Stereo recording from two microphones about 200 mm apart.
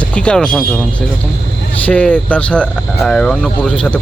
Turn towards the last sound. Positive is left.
turn(degrees=5)  # may be behind; listen again after turning